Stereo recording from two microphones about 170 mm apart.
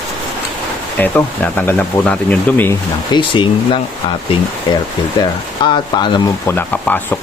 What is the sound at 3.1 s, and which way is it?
Speech, 25° left (ahead or behind).